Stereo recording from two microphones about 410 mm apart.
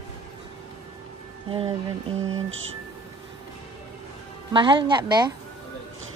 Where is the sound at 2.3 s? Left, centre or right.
Right.